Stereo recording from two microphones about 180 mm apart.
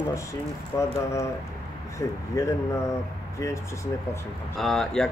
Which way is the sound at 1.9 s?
15° left (ahead or behind).